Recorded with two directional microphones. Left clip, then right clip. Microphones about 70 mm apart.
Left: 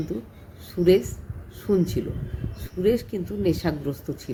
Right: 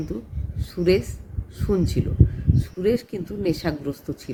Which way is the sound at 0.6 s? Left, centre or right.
Right.